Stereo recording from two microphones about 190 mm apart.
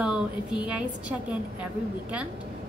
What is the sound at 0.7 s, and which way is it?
A woman's voice, 5° right (ahead or behind).